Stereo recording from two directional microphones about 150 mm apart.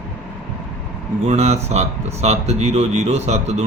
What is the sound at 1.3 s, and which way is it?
Speech, 45° right (ahead or behind).